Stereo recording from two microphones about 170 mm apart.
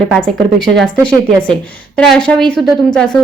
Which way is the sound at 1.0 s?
10° left (ahead or behind).